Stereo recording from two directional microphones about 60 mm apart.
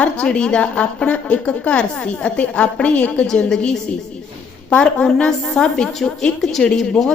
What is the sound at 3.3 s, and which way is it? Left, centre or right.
A woman's voice, centre.